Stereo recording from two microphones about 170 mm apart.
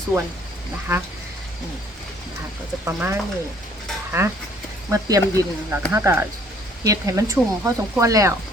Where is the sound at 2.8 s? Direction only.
15° right (ahead or behind).